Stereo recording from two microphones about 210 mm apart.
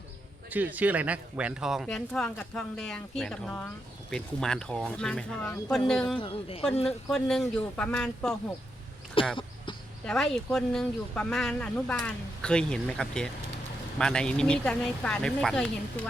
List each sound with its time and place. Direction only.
0.5 s speech: 10° right (ahead or behind)
6.1 s speech: 25° left (ahead or behind)
7.1 s speech: 5° left (ahead or behind)
9.2 s speech: 25° left (ahead or behind)
10.1 s speech: centre (ahead or behind)